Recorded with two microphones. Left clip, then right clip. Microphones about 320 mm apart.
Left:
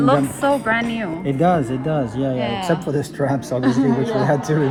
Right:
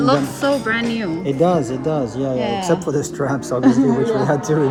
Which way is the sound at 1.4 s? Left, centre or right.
Left.